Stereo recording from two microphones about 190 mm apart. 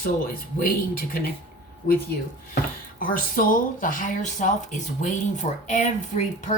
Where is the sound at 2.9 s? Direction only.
45° left (ahead or behind).